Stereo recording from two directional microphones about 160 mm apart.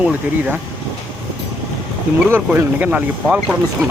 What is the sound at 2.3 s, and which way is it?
Speech, 10° right (ahead or behind).